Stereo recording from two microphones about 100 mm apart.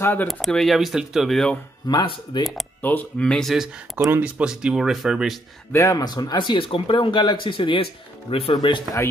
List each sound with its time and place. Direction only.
0.0 s speech: 20° left (ahead or behind)
0.3 s speech: centre (ahead or behind)
1.8 s speech: 50° left (ahead or behind)
2.8 s speech: 20° left (ahead or behind); by 5.4 s 5° right (ahead or behind)
5.7 s speech: 30° left (ahead or behind)
6.0 s speech: 45° left (ahead or behind); by 8.5 s 70° left (ahead or behind)
8.5 s speech: 50° left (ahead or behind)